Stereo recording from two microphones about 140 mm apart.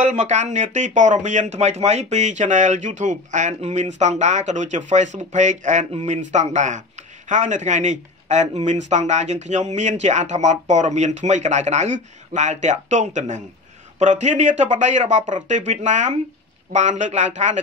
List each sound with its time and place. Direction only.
0.0 s speech: 60° right (ahead or behind)